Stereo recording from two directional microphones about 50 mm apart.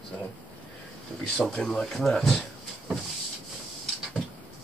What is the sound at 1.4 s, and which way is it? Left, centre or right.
Speech, centre.